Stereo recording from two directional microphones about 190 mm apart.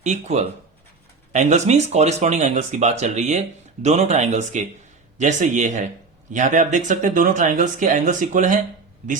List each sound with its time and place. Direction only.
0.0 s speech: 35° right (ahead or behind)